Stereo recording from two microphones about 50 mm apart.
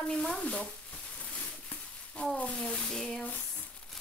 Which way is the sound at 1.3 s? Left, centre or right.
Left.